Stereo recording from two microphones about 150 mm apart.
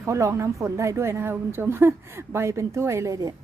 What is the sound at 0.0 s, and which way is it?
A woman's voice, 20° right (ahead or behind).